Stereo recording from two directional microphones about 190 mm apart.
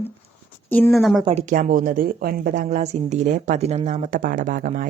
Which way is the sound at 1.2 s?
35° right (ahead or behind).